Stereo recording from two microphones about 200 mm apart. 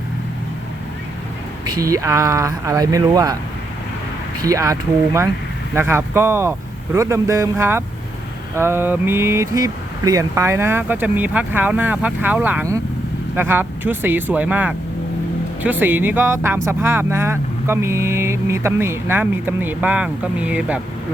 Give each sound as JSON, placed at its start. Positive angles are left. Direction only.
{"t": 1.6, "sound": "speech", "side_deg": -20}
{"t": 4.4, "sound": "speech", "side_deg": -15}